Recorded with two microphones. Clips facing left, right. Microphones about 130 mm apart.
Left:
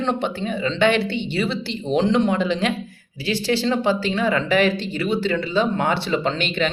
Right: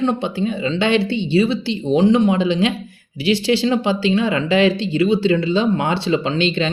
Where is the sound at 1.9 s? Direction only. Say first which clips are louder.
Right 4 dB; 15° right (ahead or behind).